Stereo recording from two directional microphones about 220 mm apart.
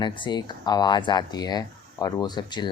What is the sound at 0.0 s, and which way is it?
Speech, 20° left (ahead or behind).